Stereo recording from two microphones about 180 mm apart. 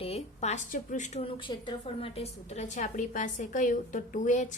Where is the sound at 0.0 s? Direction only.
35° left (ahead or behind).